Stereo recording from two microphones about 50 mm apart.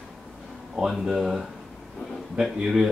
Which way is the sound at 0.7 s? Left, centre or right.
Centre.